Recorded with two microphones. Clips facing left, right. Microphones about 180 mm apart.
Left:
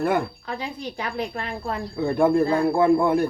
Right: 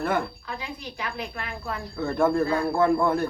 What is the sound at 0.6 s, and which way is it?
Speech, 35° left (ahead or behind).